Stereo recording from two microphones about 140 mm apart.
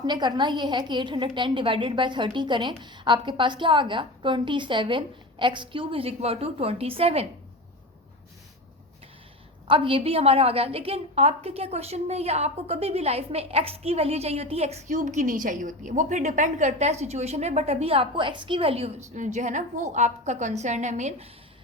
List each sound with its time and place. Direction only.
0.0 s a woman's voice: 30° right (ahead or behind)
9.6 s a woman's voice: 40° right (ahead or behind)
19.1 s a woman's voice: 60° right (ahead or behind)